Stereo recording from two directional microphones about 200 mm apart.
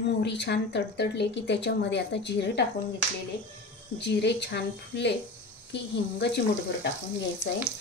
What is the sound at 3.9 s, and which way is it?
Speech, 60° left (ahead or behind).